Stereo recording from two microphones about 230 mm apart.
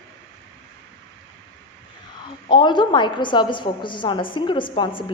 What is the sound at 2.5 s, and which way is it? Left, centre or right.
A woman's voice, left.